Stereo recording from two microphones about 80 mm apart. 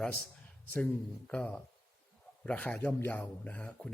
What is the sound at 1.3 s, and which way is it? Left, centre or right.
A man's voice, centre.